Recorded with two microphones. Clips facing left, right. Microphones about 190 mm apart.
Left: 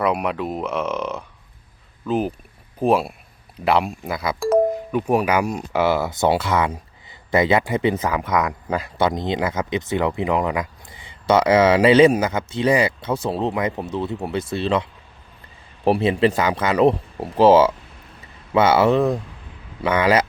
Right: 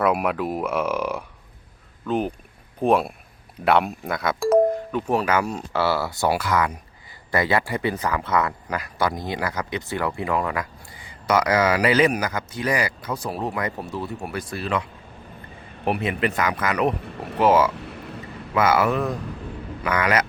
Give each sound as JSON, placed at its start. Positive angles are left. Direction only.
{"t": 0.0, "sound": "speech", "side_deg": -5}
{"t": 2.0, "sound": "speech", "side_deg": 5}
{"t": 4.9, "sound": "speech", "side_deg": 10}
{"t": 8.6, "sound": "speech", "side_deg": 25}
{"t": 17.0, "sound": "speech", "side_deg": -75}
{"t": 17.3, "sound": "speech", "side_deg": 30}